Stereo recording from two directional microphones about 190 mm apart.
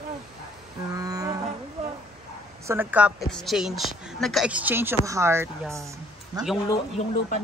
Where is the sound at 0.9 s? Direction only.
20° right (ahead or behind).